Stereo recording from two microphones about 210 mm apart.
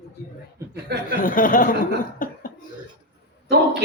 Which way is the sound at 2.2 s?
40° left (ahead or behind).